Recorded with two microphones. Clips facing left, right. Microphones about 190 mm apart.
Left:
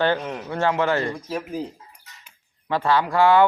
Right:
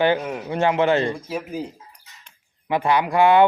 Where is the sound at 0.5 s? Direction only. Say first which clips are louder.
Right 3 dB; 20° right (ahead or behind).